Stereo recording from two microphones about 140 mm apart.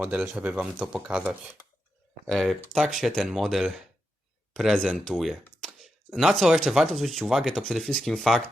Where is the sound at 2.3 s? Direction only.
5° left (ahead or behind).